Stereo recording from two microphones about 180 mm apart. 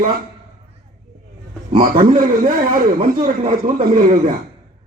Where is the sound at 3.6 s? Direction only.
45° right (ahead or behind).